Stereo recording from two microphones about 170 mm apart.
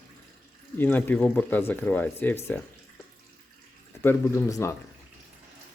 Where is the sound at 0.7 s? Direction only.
10° left (ahead or behind).